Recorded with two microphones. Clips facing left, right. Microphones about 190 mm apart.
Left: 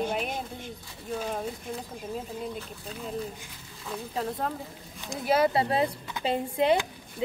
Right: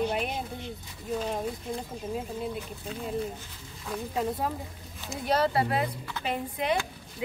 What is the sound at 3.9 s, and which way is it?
Speech, 5° right (ahead or behind).